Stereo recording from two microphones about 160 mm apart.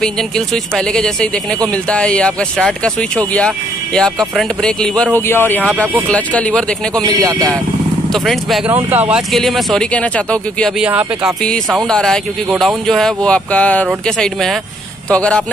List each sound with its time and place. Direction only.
0.7 s speech: 5° left (ahead or behind)
7.0 s a man's voice: 25° right (ahead or behind)
8.1 s speech: centre (ahead or behind)
8.6 s speech: 10° right (ahead or behind)
9.3 s speech: centre (ahead or behind)
10.8 s speech: 5° right (ahead or behind)
11.4 s speech: 5° left (ahead or behind)